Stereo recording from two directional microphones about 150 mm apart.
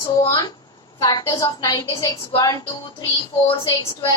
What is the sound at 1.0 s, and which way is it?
A woman's voice, 25° left (ahead or behind).